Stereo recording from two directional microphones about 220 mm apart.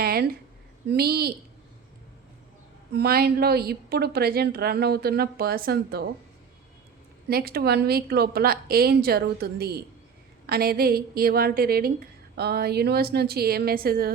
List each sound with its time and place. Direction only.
0.0 s a sound: 45° right (ahead or behind)
0.9 s a woman's voice: 45° right (ahead or behind)
2.9 s a woman's voice: 45° right (ahead or behind)
7.3 s a woman's voice: 45° right (ahead or behind)